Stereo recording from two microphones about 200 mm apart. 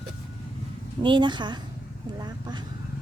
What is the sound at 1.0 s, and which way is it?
A woman's voice, 25° right (ahead or behind).